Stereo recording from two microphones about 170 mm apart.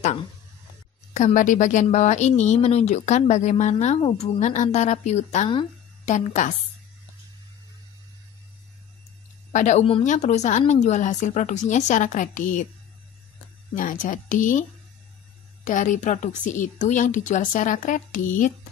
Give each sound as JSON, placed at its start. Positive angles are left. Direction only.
{"t": 1.1, "sound": "a woman's voice", "side_deg": 50}
{"t": 9.5, "sound": "a woman's voice", "side_deg": 45}
{"t": 13.7, "sound": "a woman's voice", "side_deg": 50}